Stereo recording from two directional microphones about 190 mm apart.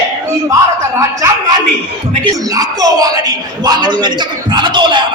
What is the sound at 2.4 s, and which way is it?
A man's voice, 20° right (ahead or behind).